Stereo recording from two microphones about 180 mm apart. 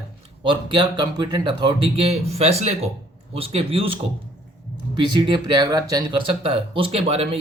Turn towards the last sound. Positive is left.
turn(degrees=-35)  # may be behind; listen again after turning